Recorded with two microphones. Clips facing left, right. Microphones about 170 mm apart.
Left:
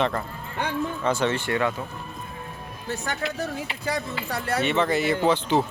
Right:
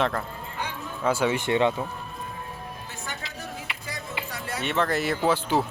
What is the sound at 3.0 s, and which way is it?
Speech, 75° left (ahead or behind).